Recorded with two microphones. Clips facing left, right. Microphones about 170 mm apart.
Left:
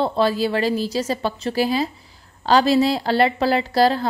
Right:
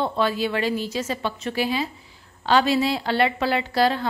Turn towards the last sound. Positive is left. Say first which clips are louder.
# left 4 dB
turn(degrees=35)  # may be behind; listen again after turning